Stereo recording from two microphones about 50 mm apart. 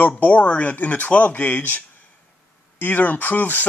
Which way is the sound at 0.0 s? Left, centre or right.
Left.